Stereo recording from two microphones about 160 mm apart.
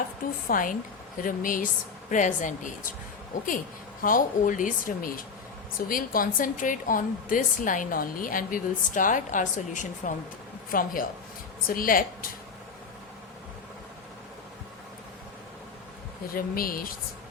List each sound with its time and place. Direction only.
0.4 s a woman's voice: 60° left (ahead or behind)
4.0 s a woman's voice: 55° left (ahead or behind)
16.3 s a woman's voice: 65° left (ahead or behind)